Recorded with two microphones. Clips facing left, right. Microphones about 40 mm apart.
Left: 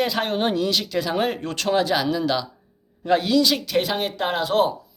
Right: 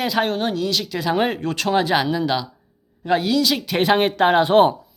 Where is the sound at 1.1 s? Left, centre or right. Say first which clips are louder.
Right 5 dB; centre.